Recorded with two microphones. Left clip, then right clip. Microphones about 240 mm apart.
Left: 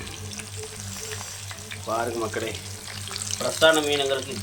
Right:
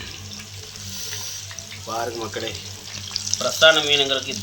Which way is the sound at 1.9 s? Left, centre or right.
Centre.